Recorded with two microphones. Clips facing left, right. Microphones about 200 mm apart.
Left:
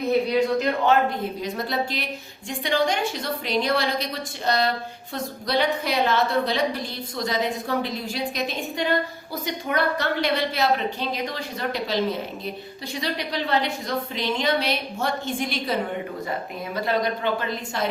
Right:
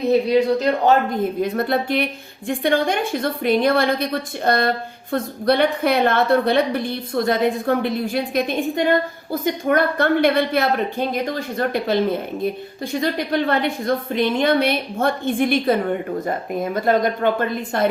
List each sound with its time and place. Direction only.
0.3 s a woman's voice: 40° right (ahead or behind)